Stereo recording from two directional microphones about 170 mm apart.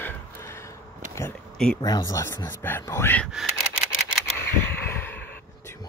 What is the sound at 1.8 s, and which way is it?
Speech, 25° left (ahead or behind).